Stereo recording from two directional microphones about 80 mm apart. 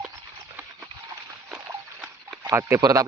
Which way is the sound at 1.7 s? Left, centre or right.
Right.